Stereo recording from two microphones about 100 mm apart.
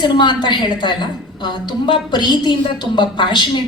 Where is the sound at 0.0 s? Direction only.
50° left (ahead or behind).